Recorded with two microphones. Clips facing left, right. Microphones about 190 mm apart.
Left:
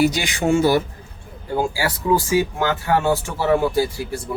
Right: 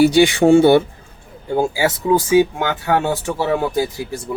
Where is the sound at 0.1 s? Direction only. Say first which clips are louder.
Right 9 dB; 30° right (ahead or behind).